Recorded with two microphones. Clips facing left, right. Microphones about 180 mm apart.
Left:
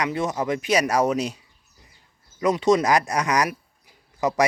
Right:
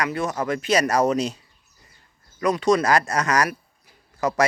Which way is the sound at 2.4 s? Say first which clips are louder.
Left 1 dB; 20° left (ahead or behind).